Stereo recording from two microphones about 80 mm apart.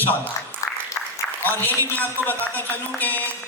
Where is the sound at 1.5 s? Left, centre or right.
Left.